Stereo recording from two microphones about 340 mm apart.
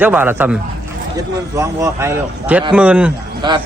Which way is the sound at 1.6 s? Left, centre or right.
Centre.